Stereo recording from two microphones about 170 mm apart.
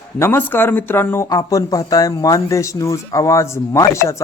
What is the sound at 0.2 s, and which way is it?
A man's voice, 15° left (ahead or behind).